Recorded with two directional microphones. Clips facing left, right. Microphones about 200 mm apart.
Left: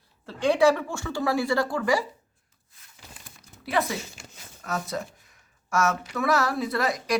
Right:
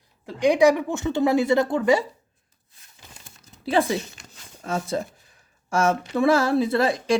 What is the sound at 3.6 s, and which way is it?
Speech, 30° right (ahead or behind).